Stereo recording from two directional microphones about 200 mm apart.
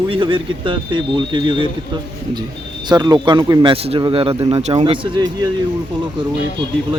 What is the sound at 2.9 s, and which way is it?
A man's voice, 20° right (ahead or behind).